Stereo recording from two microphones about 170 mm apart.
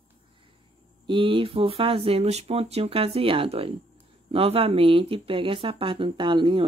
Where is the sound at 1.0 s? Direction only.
30° right (ahead or behind).